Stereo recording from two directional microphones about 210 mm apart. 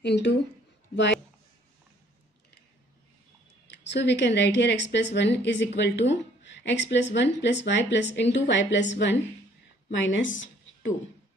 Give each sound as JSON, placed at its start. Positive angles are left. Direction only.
{"t": 0.0, "sound": "speech", "side_deg": 55}
{"t": 3.7, "sound": "speech", "side_deg": 55}